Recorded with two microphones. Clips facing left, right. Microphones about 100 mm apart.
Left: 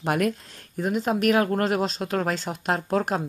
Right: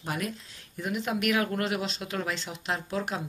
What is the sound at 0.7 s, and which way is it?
Speech, 40° left (ahead or behind).